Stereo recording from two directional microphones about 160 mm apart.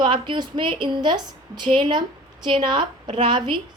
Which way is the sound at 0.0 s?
30° right (ahead or behind).